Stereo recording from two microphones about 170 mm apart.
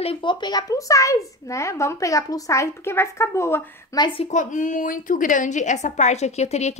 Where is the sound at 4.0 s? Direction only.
30° left (ahead or behind).